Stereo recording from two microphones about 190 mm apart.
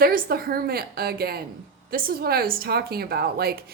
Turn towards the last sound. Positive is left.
turn(degrees=-55)  # may be behind; listen again after turning